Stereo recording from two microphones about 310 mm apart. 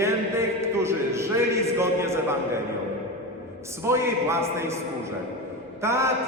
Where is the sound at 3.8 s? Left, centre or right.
Centre.